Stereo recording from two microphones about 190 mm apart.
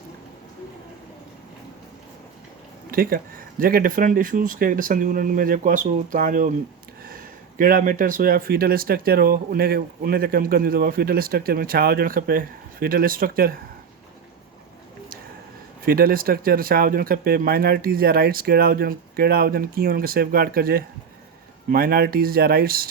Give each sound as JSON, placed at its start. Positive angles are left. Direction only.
{"t": 2.9, "sound": "speech", "side_deg": -50}
{"t": 15.8, "sound": "speech", "side_deg": -50}